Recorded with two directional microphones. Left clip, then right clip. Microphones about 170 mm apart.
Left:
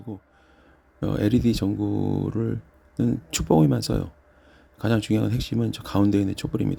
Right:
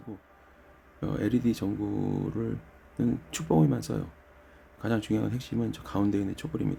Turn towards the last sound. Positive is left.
turn(degrees=40)  # may be behind; listen again after turning